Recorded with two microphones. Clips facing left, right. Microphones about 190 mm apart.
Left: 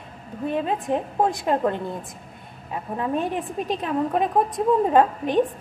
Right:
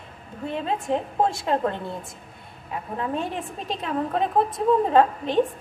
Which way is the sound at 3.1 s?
15° left (ahead or behind).